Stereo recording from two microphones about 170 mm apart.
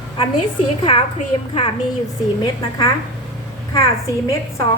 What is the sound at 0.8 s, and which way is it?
Speech, 30° left (ahead or behind).